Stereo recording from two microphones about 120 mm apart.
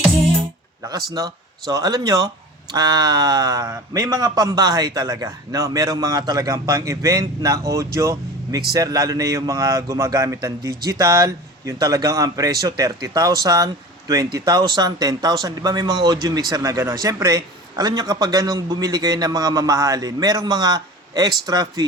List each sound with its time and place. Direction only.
0.8 s a man's voice: 30° right (ahead or behind)